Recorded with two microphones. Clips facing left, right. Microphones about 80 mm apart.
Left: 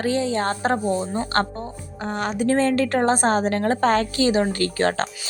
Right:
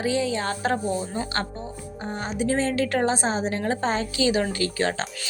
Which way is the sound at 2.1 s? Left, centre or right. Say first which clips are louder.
Left 6 dB; left.